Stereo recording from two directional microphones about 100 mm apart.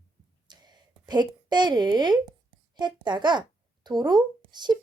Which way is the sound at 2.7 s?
50° right (ahead or behind).